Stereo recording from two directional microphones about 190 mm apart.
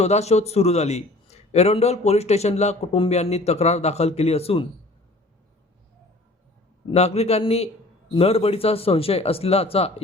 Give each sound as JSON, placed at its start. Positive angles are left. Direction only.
{"t": 0.0, "sound": "a man's voice", "side_deg": 35}
{"t": 6.9, "sound": "a man's voice", "side_deg": 35}